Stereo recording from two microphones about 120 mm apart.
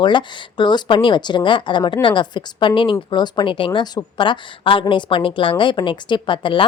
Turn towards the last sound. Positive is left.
turn(degrees=45)  # may be behind; listen again after turning